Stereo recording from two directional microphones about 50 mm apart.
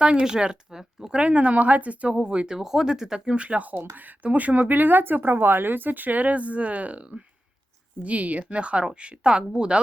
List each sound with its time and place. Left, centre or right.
0.0 s speech: centre
1.2 s a woman's voice: right
2.6 s speech: centre; by 7.0 s right
8.0 s a woman's voice: right